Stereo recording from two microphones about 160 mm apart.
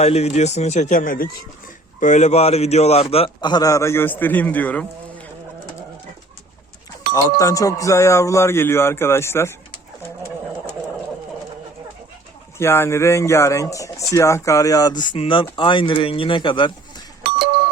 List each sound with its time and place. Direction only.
0.0 s speech: 40° left (ahead or behind); by 5.2 s 10° left (ahead or behind)
7.1 s speech: 20° left (ahead or behind)
12.5 s speech: 15° left (ahead or behind); by 16.7 s 30° left (ahead or behind)